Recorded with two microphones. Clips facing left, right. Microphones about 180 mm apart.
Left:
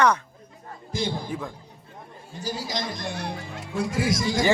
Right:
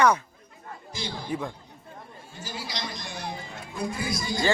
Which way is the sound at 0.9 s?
55° left (ahead or behind).